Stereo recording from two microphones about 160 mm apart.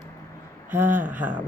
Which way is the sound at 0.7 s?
10° right (ahead or behind).